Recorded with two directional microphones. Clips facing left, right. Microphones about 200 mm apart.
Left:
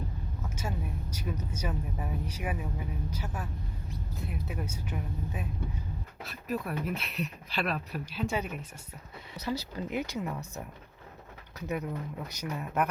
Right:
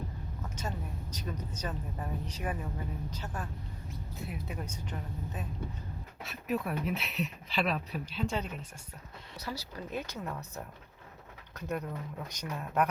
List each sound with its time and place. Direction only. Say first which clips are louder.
0.4 s vehicle: left 1 dB; 10° left (ahead or behind)
1.1 s speech: left 2 dB; 10° left (ahead or behind)
9.4 s speech: left 6 dB; 20° left (ahead or behind)
10.1 s speech: left 4 dB; 10° left (ahead or behind)